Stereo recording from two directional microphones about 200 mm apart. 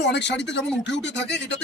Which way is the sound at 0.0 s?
60° left (ahead or behind).